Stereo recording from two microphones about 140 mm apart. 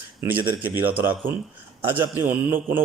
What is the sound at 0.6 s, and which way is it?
A man's voice, 15° right (ahead or behind).